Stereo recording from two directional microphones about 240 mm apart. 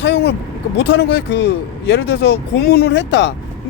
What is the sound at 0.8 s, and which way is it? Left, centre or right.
Speech, left.